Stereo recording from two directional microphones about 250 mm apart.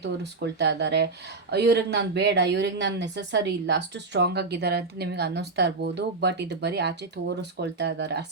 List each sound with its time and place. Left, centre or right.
0.0 s speech: right